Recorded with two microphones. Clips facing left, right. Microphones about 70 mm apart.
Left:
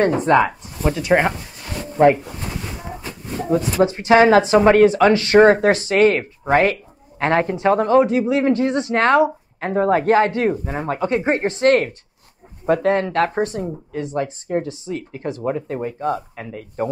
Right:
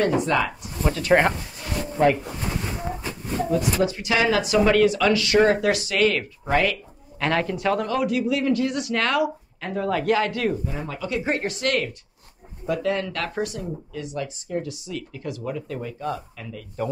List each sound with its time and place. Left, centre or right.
0.0 s speech: left
0.5 s speech: centre
2.0 s speech: left
3.4 s speech: left
10.6 s speech: left